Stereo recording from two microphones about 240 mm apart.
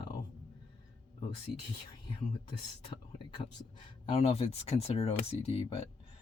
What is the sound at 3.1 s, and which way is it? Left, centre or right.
Speech, left.